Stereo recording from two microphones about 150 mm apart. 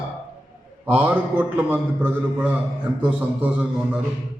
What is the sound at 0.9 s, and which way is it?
A man's voice, 10° right (ahead or behind).